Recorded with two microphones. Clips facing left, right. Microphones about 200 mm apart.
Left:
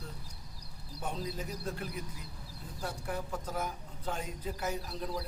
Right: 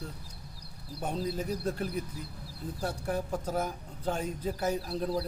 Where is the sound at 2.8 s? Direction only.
35° right (ahead or behind).